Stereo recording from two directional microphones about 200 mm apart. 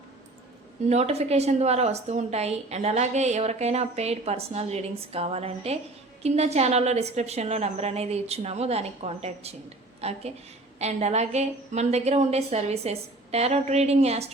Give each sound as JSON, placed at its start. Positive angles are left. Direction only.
{"t": 0.9, "sound": "a woman's voice", "side_deg": -35}